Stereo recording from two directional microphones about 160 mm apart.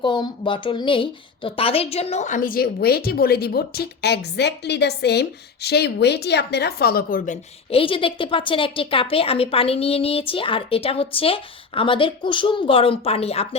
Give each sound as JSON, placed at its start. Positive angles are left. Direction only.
{"t": 0.0, "sound": "a woman's voice", "side_deg": 30}
{"t": 7.7, "sound": "a woman's voice", "side_deg": 35}